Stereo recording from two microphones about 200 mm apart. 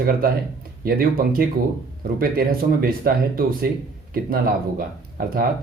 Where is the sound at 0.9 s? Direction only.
45° right (ahead or behind).